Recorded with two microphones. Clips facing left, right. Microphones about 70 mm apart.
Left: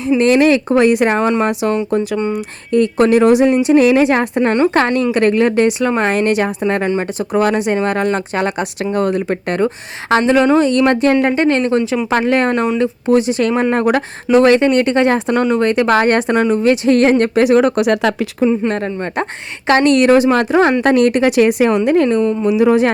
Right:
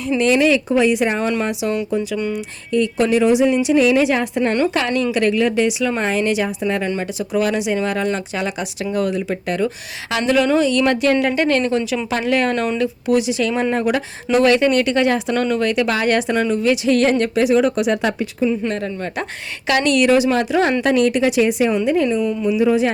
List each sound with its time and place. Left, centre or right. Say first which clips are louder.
0.2 s a woman's voice: left 3 dB; left
14.3 s a woman's voice: left 4 dB; left
18.4 s a woman's voice: left 5 dB; left
22.2 s speech: left 5 dB; left
22.4 s speech: left 4 dB; left